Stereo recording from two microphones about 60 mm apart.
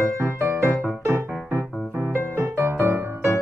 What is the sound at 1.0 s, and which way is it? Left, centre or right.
Music, right.